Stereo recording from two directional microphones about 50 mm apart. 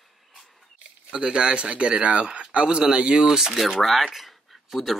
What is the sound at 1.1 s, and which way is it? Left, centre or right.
Speech, centre.